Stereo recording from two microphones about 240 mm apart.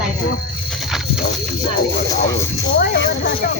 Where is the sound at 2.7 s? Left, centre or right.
Left.